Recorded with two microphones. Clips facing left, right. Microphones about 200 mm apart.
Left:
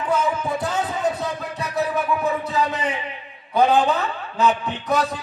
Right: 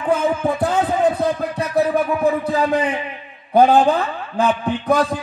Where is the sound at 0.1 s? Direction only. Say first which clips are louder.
Right 5 dB; 55° right (ahead or behind).